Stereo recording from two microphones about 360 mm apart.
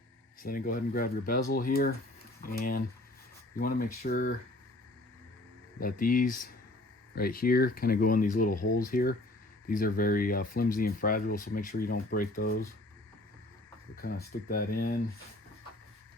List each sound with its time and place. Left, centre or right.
0.4 s speech: left
5.8 s speech: left
13.9 s speech: left